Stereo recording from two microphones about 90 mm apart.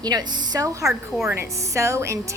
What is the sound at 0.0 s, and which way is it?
A woman's voice, 50° right (ahead or behind).